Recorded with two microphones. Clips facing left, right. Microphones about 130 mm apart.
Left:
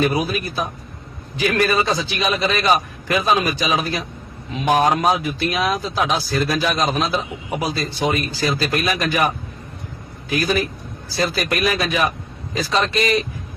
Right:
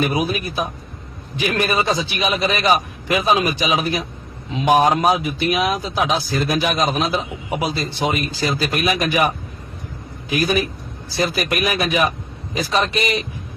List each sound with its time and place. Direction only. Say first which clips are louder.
0.0 s a man's voice: even; 20° right (ahead or behind)
10.3 s a man's voice: right 1 dB; 20° right (ahead or behind)